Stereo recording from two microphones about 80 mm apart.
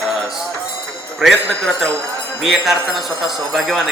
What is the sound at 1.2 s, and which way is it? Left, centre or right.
Speech, centre.